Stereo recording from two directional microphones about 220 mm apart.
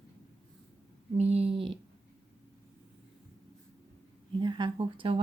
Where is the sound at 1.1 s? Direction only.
30° right (ahead or behind).